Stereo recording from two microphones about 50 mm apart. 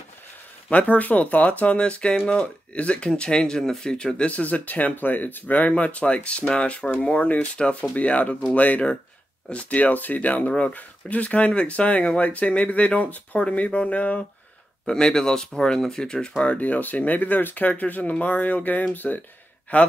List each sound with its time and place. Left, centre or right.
0.7 s speech: left
4.3 s speech: left
7.5 s speech: centre
7.9 s speech: left
14.9 s speech: centre
16.5 s speech: left